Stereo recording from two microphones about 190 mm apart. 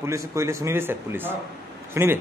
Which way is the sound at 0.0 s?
15° right (ahead or behind).